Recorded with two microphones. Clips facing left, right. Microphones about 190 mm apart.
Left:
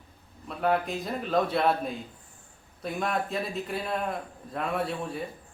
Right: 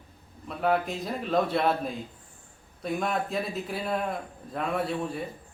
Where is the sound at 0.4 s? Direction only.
Centre (ahead or behind).